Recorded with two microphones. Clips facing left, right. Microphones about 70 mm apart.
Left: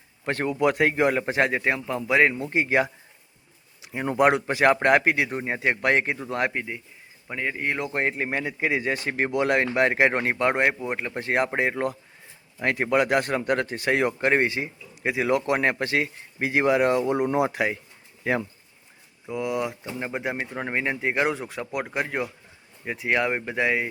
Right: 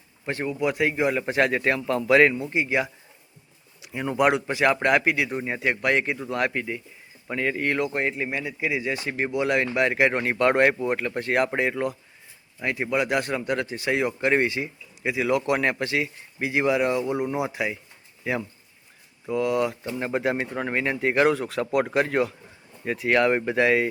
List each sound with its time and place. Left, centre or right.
0.3 s speech: left
1.2 s speech: left
2.0 s speech: centre
2.4 s speech: left
4.2 s speech: left; by 7.8 s centre
7.9 s speech: left
10.5 s speech: centre; by 11.8 s left
12.6 s speech: left
19.3 s speech: centre